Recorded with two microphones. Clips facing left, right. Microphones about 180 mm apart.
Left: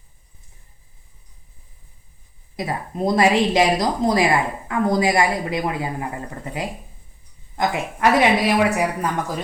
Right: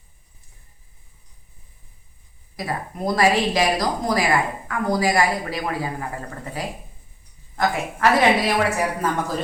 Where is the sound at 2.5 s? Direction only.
25° left (ahead or behind).